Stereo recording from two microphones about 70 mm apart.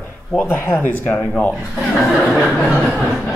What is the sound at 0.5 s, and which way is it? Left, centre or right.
Speech, left.